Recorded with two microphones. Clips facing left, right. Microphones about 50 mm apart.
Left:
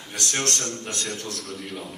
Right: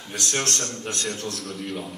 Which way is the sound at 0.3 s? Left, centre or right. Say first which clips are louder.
Even; left.